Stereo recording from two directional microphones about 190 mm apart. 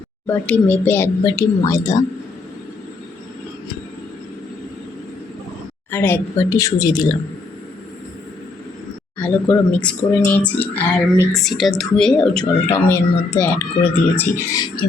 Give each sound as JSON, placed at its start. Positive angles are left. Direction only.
{"t": 0.3, "sound": "speech", "side_deg": 10}
{"t": 5.9, "sound": "speech", "side_deg": 10}
{"t": 9.1, "sound": "speech", "side_deg": 10}